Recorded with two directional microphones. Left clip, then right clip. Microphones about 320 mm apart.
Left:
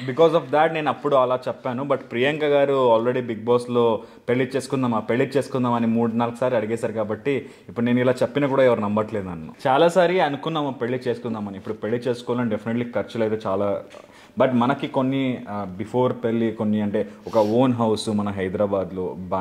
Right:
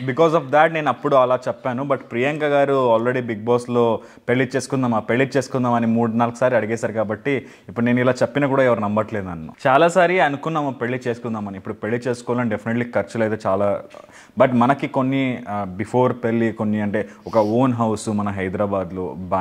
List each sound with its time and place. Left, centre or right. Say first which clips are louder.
0.0 s speech: right 1 dB; right